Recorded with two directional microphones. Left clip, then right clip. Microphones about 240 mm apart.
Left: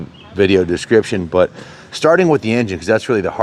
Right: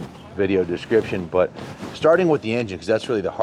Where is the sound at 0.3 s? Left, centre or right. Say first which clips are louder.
Left 7 dB; left.